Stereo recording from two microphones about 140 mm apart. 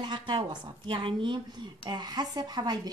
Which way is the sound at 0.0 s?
35° right (ahead or behind).